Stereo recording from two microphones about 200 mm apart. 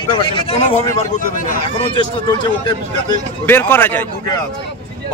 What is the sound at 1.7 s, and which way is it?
Speech, 25° left (ahead or behind).